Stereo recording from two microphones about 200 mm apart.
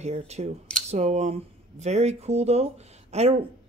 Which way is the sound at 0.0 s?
35° right (ahead or behind).